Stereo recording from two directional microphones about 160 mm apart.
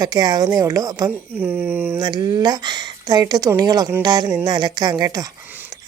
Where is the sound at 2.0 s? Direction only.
25° right (ahead or behind).